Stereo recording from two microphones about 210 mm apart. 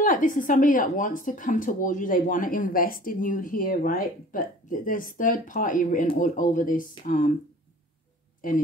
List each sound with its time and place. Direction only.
0.0 s speech: 40° left (ahead or behind)
8.4 s speech: 40° left (ahead or behind)